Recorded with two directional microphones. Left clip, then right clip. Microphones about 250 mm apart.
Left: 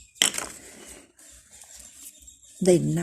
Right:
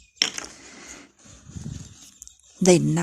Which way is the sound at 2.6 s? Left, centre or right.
Centre.